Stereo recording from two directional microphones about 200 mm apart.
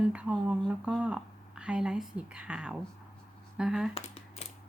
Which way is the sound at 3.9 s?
35° left (ahead or behind).